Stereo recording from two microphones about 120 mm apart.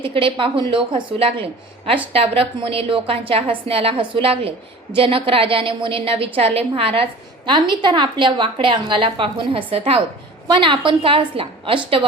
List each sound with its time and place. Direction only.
0.0 s a woman's voice: 45° right (ahead or behind)